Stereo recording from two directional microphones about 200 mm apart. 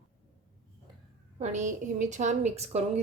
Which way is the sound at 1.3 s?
35° right (ahead or behind).